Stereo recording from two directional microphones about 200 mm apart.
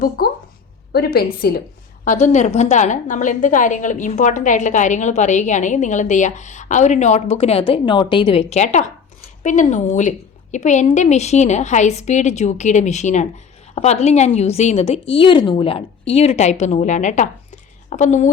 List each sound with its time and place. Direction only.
0.2 s a sound: 50° left (ahead or behind)
0.9 s a woman's voice: 50° left (ahead or behind)
2.0 s a woman's voice: 35° left (ahead or behind)